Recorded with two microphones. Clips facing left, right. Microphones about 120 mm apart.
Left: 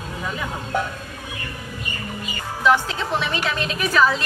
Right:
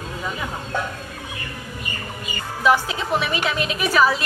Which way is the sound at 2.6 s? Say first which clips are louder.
Even; 10° right (ahead or behind).